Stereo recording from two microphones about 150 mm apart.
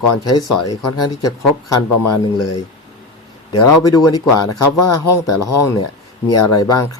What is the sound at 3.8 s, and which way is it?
Speech, 25° left (ahead or behind).